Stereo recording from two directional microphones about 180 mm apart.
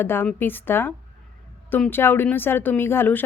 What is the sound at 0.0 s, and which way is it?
Speech, 10° left (ahead or behind).